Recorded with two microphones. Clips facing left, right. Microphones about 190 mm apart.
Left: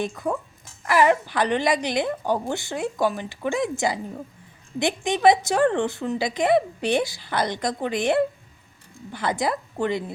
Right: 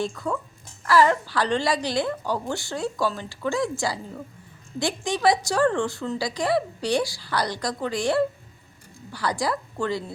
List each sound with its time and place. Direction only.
0.0 s a woman's voice: 20° left (ahead or behind)